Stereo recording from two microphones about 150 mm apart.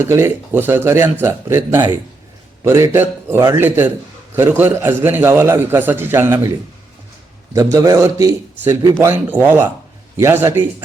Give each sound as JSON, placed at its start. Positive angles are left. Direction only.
{"t": 0.0, "sound": "a man's voice", "side_deg": -15}
{"t": 7.5, "sound": "a man's voice", "side_deg": -20}